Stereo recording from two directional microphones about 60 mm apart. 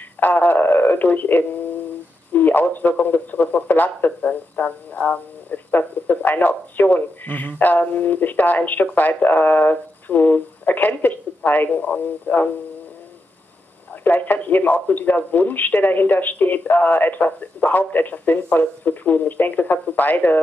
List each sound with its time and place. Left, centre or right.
0.2 s speech: left
14.0 s speech: left